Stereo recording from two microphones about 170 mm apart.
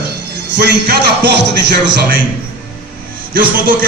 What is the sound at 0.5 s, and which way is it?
Speech, 75° right (ahead or behind).